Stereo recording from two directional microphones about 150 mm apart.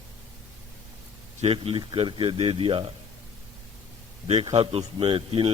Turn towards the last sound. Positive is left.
turn(degrees=-35)  # may be behind; listen again after turning